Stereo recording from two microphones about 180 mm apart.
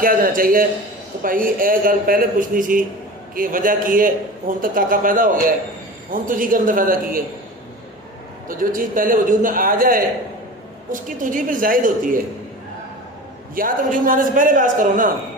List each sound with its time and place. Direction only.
0.0 s a man's voice: 50° right (ahead or behind)
8.4 s a man's voice: 50° right (ahead or behind)
13.6 s a man's voice: 50° right (ahead or behind)